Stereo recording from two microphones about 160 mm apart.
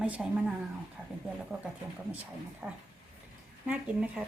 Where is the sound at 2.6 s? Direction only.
10° right (ahead or behind).